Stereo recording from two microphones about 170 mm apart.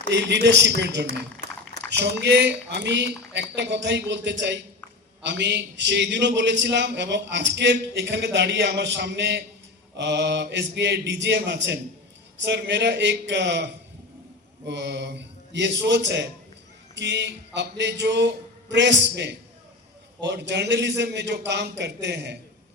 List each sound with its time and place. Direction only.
0.1 s a man's voice: 90° right
14.7 s a man's voice: 90° right